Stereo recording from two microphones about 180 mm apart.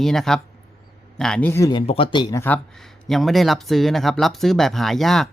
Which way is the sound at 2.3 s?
10° left (ahead or behind).